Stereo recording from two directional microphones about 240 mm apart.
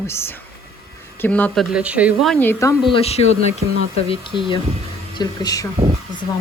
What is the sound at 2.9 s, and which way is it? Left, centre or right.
Speech, left.